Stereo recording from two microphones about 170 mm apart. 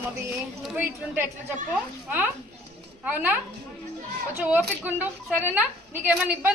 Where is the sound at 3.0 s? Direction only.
10° right (ahead or behind).